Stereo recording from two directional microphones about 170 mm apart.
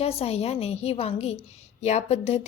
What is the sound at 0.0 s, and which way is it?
A woman's voice, 35° left (ahead or behind).